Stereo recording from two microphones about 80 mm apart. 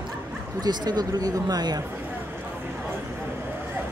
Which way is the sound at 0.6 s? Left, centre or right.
Right.